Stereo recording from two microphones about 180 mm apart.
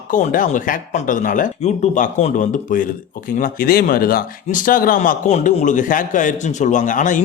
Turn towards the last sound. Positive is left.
turn(degrees=45)  # may be behind; listen again after turning